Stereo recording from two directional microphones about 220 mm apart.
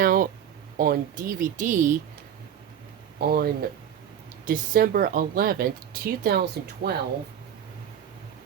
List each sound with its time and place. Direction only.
0.0 s a sound: 40° right (ahead or behind)
0.8 s speech: 40° right (ahead or behind)
3.2 s speech: 45° right (ahead or behind)